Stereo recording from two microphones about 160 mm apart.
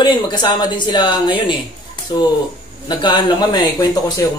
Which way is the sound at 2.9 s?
25° left (ahead or behind).